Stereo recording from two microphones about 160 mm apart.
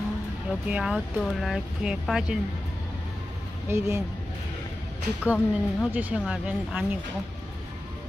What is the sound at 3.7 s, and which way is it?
Speech, 15° right (ahead or behind).